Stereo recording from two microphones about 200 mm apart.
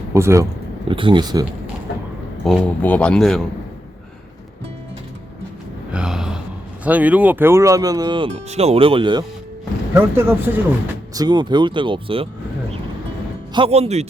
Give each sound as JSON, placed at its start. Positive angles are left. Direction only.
{"t": 0.1, "sound": "speech", "side_deg": -15}
{"t": 0.9, "sound": "speech", "side_deg": -25}
{"t": 2.4, "sound": "a man's voice", "side_deg": 0}
{"t": 5.9, "sound": "gasp", "side_deg": -5}
{"t": 6.8, "sound": "speech", "side_deg": -5}
{"t": 9.9, "sound": "speech", "side_deg": -10}
{"t": 11.1, "sound": "speech", "side_deg": -20}
{"t": 13.5, "sound": "speech", "side_deg": -30}